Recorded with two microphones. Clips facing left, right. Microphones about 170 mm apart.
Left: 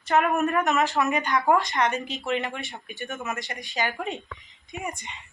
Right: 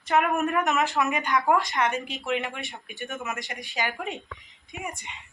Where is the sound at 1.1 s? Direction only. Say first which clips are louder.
Left 1 dB; 5° right (ahead or behind).